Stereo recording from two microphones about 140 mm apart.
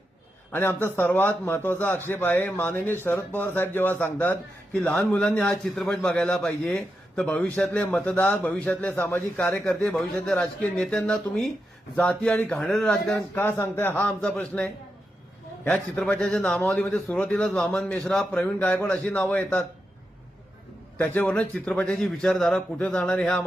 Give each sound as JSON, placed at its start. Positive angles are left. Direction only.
{"t": 0.5, "sound": "speech", "side_deg": 15}
{"t": 21.0, "sound": "speech", "side_deg": 15}